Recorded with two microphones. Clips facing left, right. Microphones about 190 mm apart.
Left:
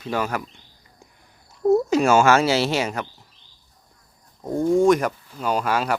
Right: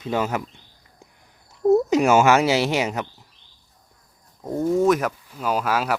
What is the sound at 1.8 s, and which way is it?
Speech, 20° right (ahead or behind).